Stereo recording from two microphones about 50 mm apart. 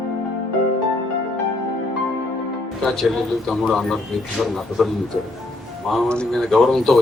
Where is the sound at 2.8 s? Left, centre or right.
Centre.